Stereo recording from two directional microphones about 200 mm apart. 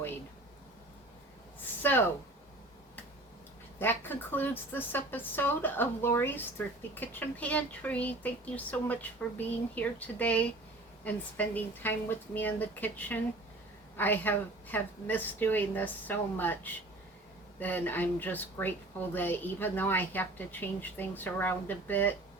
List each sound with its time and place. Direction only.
1.8 s speech: 10° left (ahead or behind)
3.8 s a woman's voice: 10° left (ahead or behind)